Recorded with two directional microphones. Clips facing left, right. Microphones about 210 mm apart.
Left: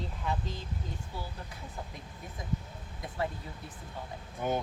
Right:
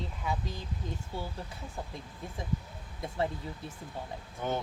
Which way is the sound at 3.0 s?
25° right (ahead or behind).